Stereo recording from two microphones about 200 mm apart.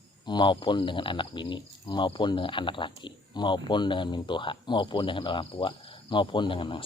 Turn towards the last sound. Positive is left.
turn(degrees=25)  # may be behind; listen again after turning